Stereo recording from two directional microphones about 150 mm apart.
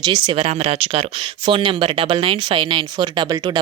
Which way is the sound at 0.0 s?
30° right (ahead or behind).